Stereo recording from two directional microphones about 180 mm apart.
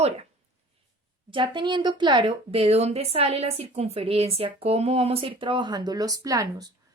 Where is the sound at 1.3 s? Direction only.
25° right (ahead or behind).